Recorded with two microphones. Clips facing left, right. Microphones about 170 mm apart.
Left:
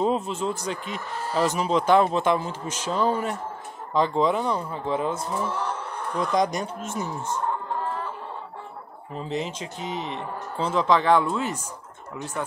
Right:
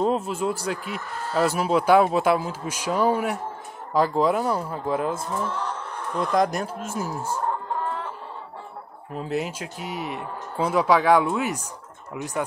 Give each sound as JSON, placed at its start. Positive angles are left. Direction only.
{"t": 0.0, "sound": "speech", "side_deg": -5}
{"t": 5.3, "sound": "speech", "side_deg": 10}
{"t": 6.1, "sound": "speech", "side_deg": 0}
{"t": 9.1, "sound": "speech", "side_deg": -5}